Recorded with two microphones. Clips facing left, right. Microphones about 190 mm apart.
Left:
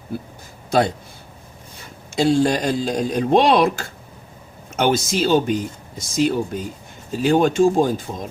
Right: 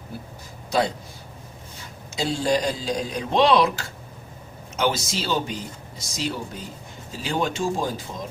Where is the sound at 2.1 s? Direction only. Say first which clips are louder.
Left 6 dB; 55° left (ahead or behind).